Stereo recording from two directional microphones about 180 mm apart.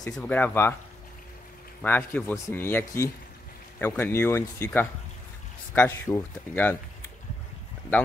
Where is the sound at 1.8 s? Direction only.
10° left (ahead or behind).